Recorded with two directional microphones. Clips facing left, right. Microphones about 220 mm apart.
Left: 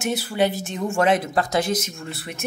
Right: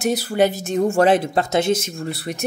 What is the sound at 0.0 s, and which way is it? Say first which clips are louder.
Speech: right 4 dB; 40° right (ahead or behind).